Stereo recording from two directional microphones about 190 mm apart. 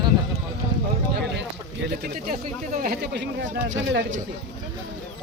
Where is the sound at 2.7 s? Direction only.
50° right (ahead or behind).